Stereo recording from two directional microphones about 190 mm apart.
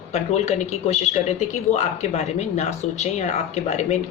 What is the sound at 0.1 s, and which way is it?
Speech, 35° left (ahead or behind).